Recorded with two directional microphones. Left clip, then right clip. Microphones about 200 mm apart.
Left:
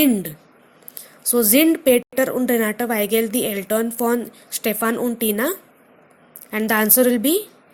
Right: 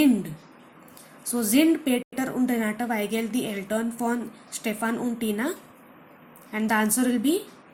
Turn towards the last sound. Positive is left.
turn(degrees=50)  # may be behind; listen again after turning